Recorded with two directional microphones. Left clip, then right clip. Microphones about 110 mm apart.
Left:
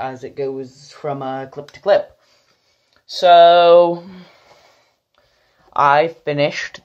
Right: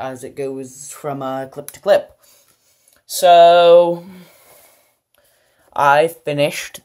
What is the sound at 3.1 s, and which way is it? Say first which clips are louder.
Speech: even; 20° right (ahead or behind).